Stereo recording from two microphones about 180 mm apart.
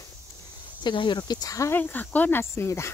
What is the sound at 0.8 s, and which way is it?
Speech, 25° left (ahead or behind).